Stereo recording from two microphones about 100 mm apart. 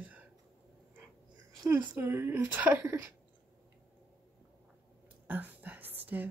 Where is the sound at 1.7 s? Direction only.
20° right (ahead or behind).